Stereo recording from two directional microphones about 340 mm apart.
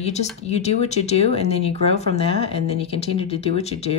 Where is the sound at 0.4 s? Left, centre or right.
Centre.